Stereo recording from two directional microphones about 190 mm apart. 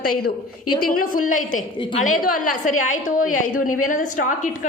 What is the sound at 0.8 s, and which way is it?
A woman's voice, 50° left (ahead or behind).